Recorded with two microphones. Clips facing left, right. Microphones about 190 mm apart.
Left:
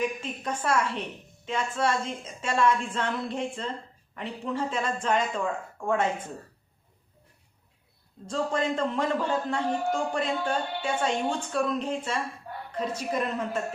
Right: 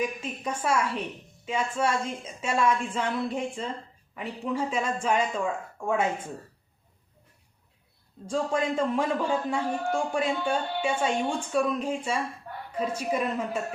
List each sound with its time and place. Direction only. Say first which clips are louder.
0.2 s a man's voice: even; 10° right (ahead or behind)
8.3 s a man's voice: right 1 dB; 10° right (ahead or behind)